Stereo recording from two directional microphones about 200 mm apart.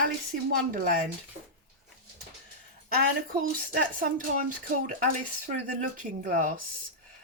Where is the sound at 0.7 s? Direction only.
45° right (ahead or behind).